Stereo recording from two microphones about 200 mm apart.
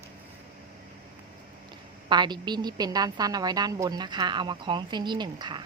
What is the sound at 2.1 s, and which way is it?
A woman's voice, 20° right (ahead or behind).